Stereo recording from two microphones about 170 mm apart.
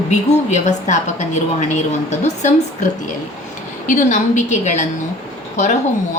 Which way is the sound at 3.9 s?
45° left (ahead or behind).